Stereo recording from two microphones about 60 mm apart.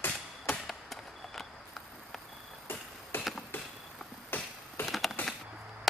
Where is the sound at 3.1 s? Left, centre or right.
Left.